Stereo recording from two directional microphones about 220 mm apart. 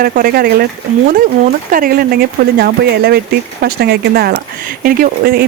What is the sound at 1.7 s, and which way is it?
Speech, 40° right (ahead or behind).